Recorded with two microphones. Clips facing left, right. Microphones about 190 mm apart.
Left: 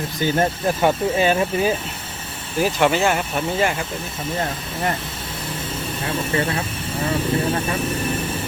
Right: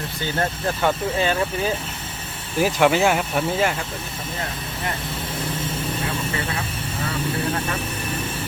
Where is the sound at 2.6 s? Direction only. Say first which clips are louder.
Right 1 dB; 10° right (ahead or behind).